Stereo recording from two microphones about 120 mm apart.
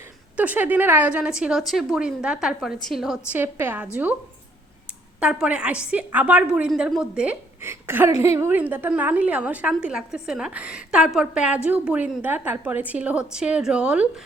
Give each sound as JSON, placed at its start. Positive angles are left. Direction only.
{"t": 0.0, "sound": "a woman's voice", "side_deg": -15}
{"t": 3.3, "sound": "a woman's voice", "side_deg": -20}
{"t": 4.9, "sound": "a woman's voice", "side_deg": -5}
{"t": 7.6, "sound": "a woman's voice", "side_deg": -20}